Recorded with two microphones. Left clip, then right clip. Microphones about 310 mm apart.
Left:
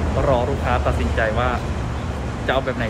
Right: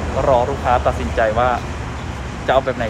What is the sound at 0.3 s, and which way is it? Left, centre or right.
Speech, centre.